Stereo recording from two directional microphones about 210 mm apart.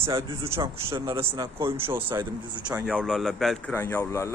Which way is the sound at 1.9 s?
10° right (ahead or behind).